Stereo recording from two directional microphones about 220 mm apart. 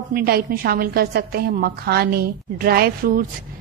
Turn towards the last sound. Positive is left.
turn(degrees=-40)  # may be behind; listen again after turning